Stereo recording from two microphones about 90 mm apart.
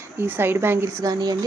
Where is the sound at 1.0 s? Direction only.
50° right (ahead or behind).